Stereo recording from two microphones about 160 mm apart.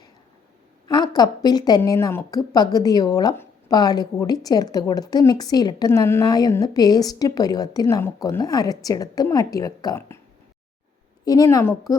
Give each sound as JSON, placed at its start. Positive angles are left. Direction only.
{"t": 0.9, "sound": "a woman's voice", "side_deg": 30}
{"t": 11.3, "sound": "a woman's voice", "side_deg": 20}